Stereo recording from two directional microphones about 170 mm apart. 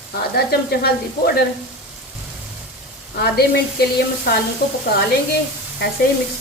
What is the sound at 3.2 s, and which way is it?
Sizzle, 70° left (ahead or behind).